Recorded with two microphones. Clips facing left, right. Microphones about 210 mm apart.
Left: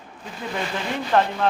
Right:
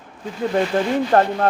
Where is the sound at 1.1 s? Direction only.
45° right (ahead or behind).